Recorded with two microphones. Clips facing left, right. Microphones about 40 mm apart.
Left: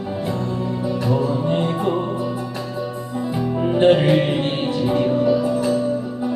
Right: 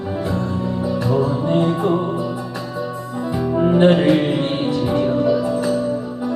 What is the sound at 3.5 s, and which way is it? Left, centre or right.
Music, centre.